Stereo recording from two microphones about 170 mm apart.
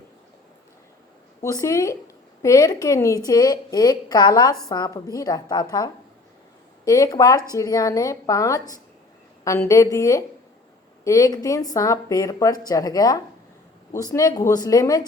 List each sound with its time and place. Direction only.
1.5 s a woman's voice: 20° left (ahead or behind)
6.8 s speech: 20° left (ahead or behind)